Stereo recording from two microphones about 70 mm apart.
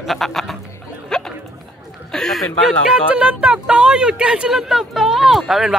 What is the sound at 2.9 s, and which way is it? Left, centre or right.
Speech, centre.